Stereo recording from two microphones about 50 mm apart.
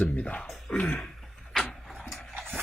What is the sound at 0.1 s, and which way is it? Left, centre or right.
Speech, left.